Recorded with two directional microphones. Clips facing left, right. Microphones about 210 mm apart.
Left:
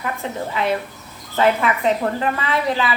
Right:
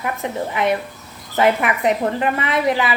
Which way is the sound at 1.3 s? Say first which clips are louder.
Right 1 dB; 15° right (ahead or behind).